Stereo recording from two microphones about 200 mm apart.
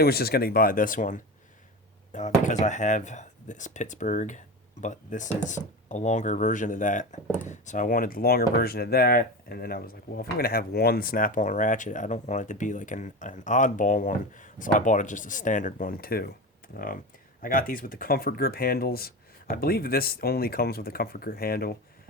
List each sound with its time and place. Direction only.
0.0 s speech: 50° left (ahead or behind)